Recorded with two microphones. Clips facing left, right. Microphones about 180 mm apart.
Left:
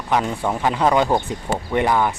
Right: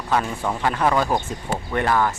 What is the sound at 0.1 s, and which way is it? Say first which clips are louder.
Speech: left 2 dB; 15° left (ahead or behind).